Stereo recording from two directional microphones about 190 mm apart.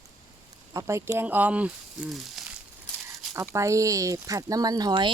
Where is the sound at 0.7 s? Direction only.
15° right (ahead or behind).